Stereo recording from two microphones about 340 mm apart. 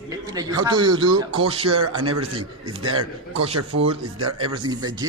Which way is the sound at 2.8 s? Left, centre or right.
Right.